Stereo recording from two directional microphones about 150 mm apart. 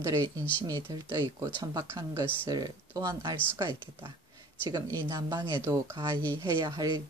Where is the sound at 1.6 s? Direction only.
25° right (ahead or behind).